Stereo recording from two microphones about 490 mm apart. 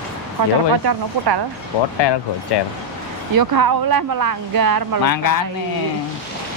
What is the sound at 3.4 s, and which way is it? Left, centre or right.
Speech, right.